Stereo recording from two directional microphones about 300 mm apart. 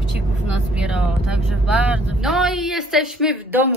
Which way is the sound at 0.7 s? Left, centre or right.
Centre.